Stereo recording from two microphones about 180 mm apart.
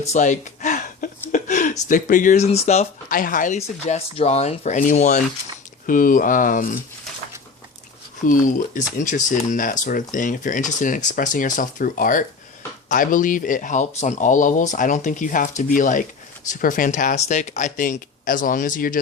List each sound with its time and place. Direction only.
0.1 s speech: 40° left (ahead or behind)
3.8 s speech: 35° left (ahead or behind)
8.3 s speech: 45° left (ahead or behind)